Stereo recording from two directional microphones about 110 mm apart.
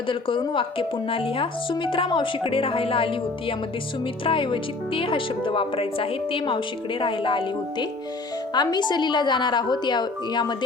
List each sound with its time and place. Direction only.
0.1 s speech: 50° left (ahead or behind)